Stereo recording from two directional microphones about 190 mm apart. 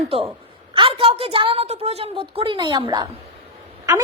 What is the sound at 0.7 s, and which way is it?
A woman's voice, 25° right (ahead or behind).